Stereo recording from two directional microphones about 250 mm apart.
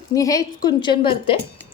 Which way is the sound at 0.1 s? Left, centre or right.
Centre.